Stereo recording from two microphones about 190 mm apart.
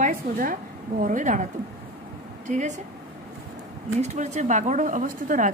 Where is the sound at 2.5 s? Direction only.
40° right (ahead or behind).